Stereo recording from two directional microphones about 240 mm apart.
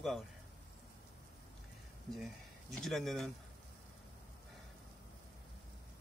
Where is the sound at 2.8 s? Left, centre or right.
Centre.